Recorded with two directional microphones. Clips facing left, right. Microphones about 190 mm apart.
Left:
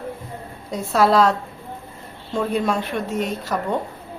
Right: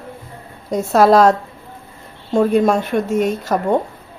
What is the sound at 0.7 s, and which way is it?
Speech, 45° right (ahead or behind).